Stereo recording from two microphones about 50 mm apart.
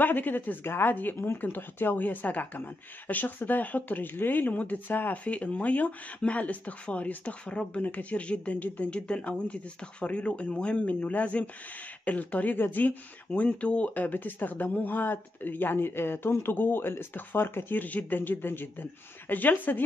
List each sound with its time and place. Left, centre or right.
0.0 s speech: left
0.7 s speech: left
5.2 s speech: left